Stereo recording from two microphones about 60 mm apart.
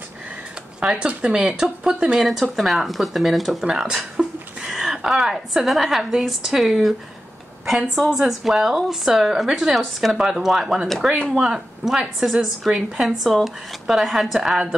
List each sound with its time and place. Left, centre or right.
0.7 s speech: centre
3.6 s a woman's voice: centre